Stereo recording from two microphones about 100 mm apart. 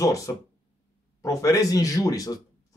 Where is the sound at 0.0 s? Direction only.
35° left (ahead or behind).